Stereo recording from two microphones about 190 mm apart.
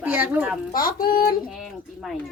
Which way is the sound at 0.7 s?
50° left (ahead or behind).